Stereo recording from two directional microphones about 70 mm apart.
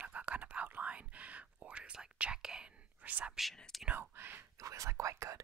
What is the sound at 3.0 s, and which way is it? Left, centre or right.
Speech, right.